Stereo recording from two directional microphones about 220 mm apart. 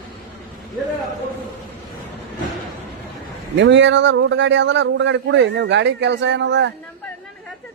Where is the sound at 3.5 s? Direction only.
55° right (ahead or behind).